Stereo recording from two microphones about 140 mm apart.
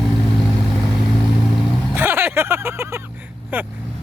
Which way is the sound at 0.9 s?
Centre (ahead or behind).